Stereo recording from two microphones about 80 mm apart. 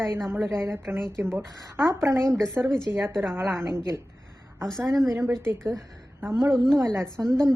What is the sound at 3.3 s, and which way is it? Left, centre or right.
Speech, right.